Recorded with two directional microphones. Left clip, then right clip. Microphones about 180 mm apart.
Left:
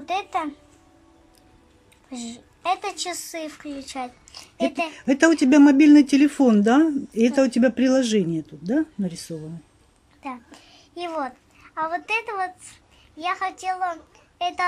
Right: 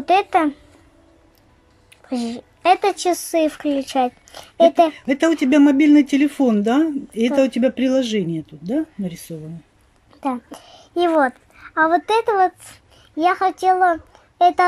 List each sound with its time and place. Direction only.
0.0 s speech: 30° right (ahead or behind)
2.0 s a woman's voice: 30° right (ahead or behind)
4.9 s speech: 10° left (ahead or behind)
10.2 s a child's voice: 35° right (ahead or behind)